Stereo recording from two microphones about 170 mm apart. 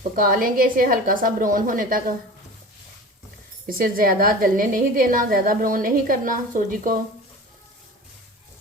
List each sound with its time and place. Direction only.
0.2 s a woman's voice: 55° right (ahead or behind)
3.7 s a woman's voice: 60° right (ahead or behind)